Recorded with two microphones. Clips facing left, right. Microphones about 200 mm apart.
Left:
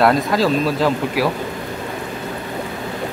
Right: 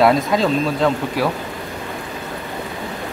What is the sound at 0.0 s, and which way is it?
Speech, centre (ahead or behind).